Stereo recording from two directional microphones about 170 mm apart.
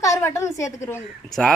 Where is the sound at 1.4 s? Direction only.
5° left (ahead or behind).